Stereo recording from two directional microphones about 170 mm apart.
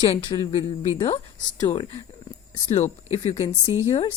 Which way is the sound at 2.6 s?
40° left (ahead or behind).